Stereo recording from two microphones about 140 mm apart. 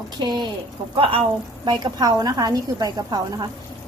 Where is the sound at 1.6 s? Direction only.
30° right (ahead or behind).